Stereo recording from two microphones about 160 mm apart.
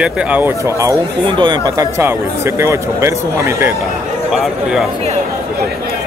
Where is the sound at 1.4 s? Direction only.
30° right (ahead or behind).